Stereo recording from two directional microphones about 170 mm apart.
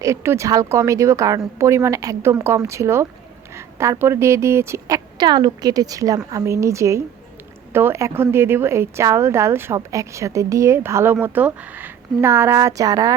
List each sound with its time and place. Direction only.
0.0 s a woman's voice: 15° right (ahead or behind)